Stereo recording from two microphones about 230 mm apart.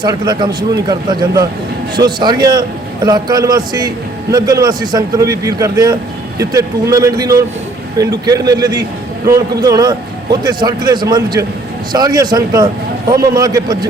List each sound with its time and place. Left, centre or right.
0.0 s a man's voice: centre